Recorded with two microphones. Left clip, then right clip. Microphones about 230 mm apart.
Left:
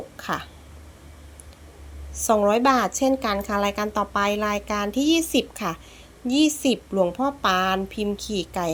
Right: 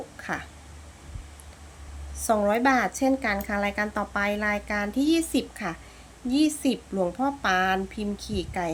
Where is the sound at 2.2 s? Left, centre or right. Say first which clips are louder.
Left 4 dB; centre.